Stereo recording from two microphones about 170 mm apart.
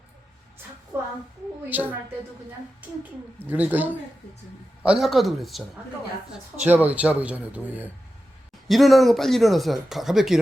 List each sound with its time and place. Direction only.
0.9 s child singing: 15° right (ahead or behind)
1.7 s speech: 10° right (ahead or behind)
3.0 s speech: 10° right (ahead or behind)
6.7 s speech: 10° right (ahead or behind)